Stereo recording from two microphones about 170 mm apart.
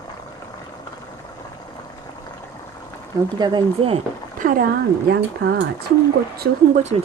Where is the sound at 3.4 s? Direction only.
25° right (ahead or behind).